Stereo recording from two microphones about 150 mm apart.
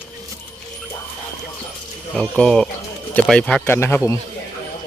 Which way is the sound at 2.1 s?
5° left (ahead or behind).